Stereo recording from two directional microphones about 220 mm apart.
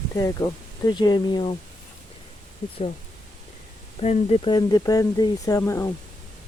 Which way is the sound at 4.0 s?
30° left (ahead or behind).